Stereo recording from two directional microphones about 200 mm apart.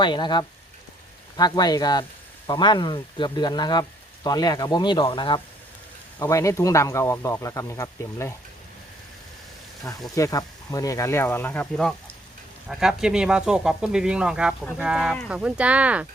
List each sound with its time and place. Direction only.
0.0 s speech: 20° left (ahead or behind)
10.2 s speech: 15° left (ahead or behind); by 16.0 s 5° right (ahead or behind)